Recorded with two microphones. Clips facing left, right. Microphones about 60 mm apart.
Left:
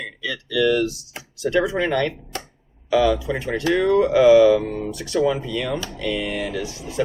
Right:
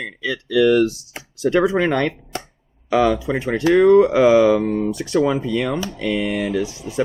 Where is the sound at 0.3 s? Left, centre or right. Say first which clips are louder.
Right 4 dB; right.